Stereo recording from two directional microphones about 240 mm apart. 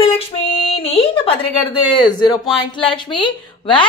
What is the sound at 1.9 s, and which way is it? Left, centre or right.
A man's voice, centre.